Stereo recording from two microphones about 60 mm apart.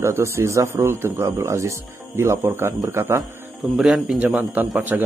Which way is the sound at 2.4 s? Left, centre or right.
Right.